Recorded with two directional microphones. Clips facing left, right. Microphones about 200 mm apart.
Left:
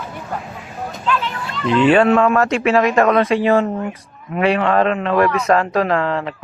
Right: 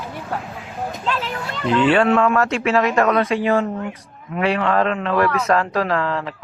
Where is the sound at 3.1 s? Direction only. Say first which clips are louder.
Left 3 dB; 80° left.